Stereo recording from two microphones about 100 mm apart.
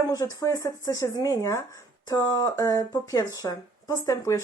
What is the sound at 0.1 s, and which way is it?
Speech, 35° left (ahead or behind).